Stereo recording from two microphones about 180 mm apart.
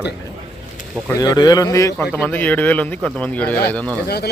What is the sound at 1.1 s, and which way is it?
Speech, 20° left (ahead or behind).